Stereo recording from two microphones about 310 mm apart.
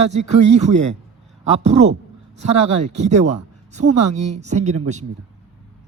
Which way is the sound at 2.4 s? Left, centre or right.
Right.